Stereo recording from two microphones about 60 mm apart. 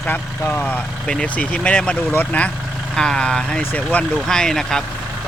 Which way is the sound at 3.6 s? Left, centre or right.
Left.